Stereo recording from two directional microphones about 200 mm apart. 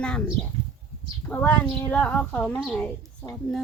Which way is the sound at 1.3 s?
10° left (ahead or behind).